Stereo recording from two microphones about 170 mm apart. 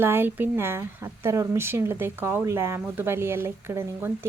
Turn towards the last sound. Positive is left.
turn(degrees=-15)  # may be behind; listen again after turning